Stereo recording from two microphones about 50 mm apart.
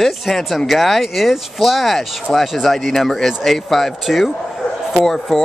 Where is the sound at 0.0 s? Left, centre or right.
Centre.